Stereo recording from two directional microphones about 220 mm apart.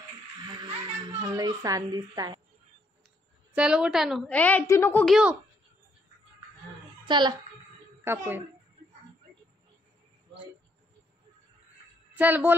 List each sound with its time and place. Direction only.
0.5 s a sound: 20° right (ahead or behind)
3.5 s a woman's voice: 5° right (ahead or behind)
7.1 s a child's voice: 20° right (ahead or behind)
12.1 s speech: 5° right (ahead or behind)